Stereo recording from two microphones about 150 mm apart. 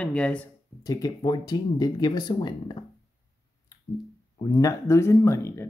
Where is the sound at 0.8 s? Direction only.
25° left (ahead or behind).